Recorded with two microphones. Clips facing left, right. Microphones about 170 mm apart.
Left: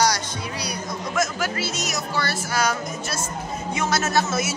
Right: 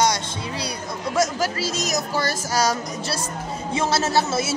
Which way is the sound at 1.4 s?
40° right (ahead or behind).